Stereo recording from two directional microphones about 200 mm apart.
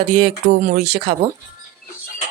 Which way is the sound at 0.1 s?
30° right (ahead or behind).